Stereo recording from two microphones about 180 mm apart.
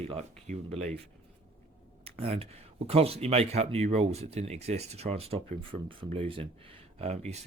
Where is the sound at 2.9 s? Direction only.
35° right (ahead or behind).